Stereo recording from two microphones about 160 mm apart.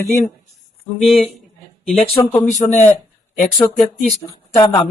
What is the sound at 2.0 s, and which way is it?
Speech, 35° left (ahead or behind).